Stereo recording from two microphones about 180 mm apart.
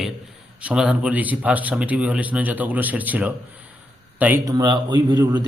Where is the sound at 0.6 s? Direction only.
5° right (ahead or behind).